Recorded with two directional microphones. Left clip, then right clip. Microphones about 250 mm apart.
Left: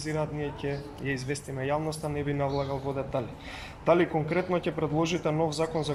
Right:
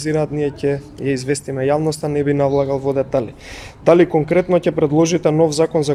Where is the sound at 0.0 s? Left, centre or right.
Right.